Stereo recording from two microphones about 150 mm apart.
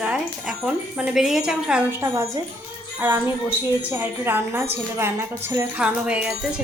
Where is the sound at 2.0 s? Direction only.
20° right (ahead or behind).